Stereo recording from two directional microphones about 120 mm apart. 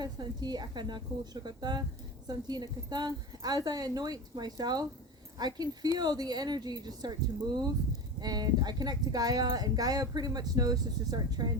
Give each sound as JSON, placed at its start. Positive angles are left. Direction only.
{"t": 0.0, "sound": "speech", "side_deg": -35}